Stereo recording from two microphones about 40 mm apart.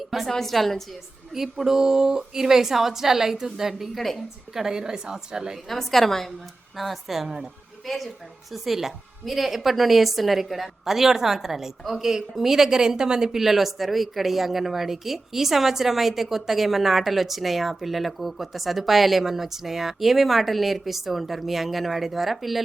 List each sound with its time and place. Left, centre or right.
0.3 s a woman's voice: centre
1.3 s a woman's voice: centre
3.9 s a woman's voice: centre
4.5 s a woman's voice: centre
5.6 s a woman's voice: centre
7.9 s a woman's voice: centre